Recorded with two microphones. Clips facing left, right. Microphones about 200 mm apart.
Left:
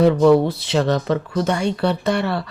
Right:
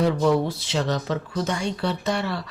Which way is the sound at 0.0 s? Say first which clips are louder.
Left 7 dB; 60° left (ahead or behind).